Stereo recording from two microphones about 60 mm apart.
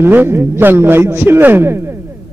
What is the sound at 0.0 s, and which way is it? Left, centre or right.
A man's voice, right.